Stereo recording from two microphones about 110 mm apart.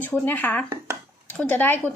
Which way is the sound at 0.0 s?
20° left (ahead or behind).